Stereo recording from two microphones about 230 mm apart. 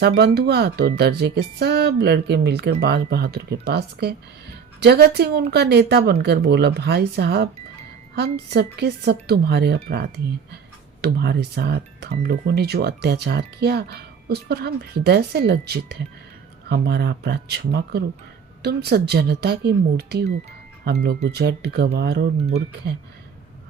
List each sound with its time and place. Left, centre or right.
0.0 s speech: right